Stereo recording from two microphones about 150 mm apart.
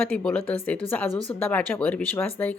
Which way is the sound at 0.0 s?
5° left (ahead or behind).